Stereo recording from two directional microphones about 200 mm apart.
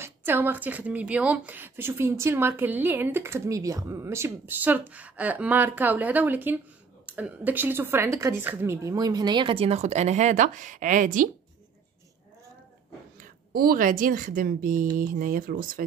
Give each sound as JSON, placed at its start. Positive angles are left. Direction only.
{"t": 0.0, "sound": "a woman's voice", "side_deg": -10}
{"t": 13.2, "sound": "speech", "side_deg": -45}